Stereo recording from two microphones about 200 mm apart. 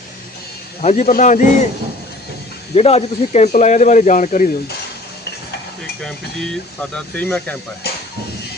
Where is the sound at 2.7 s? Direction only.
30° left (ahead or behind).